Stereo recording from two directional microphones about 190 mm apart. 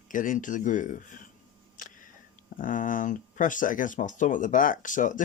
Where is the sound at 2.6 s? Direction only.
45° left (ahead or behind).